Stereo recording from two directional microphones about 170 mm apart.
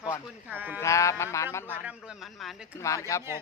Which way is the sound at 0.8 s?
20° left (ahead or behind).